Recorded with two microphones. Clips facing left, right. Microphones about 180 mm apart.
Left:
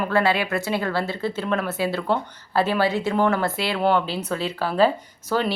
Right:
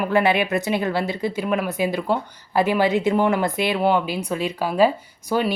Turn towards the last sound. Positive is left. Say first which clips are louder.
# right 2 dB
turn(degrees=-15)  # may be behind; listen again after turning